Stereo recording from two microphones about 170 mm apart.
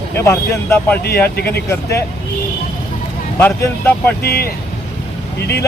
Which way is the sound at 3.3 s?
15° left (ahead or behind).